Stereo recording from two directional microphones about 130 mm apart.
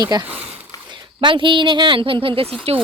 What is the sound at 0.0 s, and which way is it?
Speech, 30° right (ahead or behind).